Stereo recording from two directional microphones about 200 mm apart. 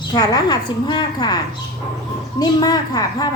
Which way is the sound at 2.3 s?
20° left (ahead or behind).